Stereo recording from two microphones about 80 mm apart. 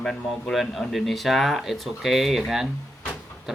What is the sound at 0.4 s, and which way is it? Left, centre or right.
Speech, centre.